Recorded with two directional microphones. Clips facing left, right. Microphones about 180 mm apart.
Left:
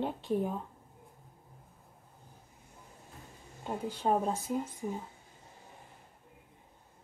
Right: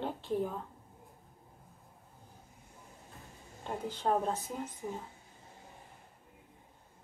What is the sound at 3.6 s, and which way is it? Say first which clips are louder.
A woman's voice: left 2 dB; 10° left (ahead or behind).